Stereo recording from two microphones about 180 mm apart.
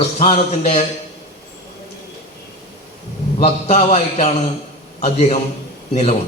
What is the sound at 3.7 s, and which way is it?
A man's voice, 35° left (ahead or behind).